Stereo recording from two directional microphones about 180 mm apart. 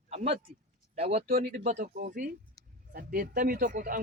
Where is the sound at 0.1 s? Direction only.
40° right (ahead or behind).